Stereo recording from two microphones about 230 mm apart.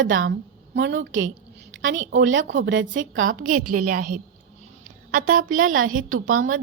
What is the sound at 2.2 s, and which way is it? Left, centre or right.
Speech, right.